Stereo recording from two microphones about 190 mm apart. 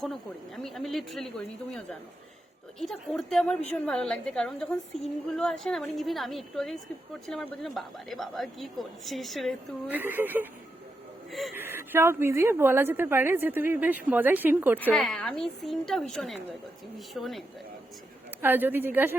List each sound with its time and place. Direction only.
0.0 s a woman's voice: centre (ahead or behind)
9.9 s a woman's voice: 10° right (ahead or behind)
11.5 s a woman's voice: 10° right (ahead or behind)
14.8 s a woman's voice: 5° left (ahead or behind)
18.4 s a woman's voice: 10° right (ahead or behind)